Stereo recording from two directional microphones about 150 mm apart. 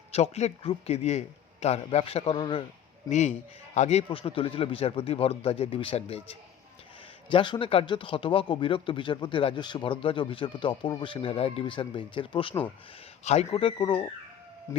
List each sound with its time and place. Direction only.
0.1 s speech: 45° left (ahead or behind)
3.1 s speech: 50° left (ahead or behind)
7.3 s speech: 35° left (ahead or behind)
14.7 s speech: 20° left (ahead or behind)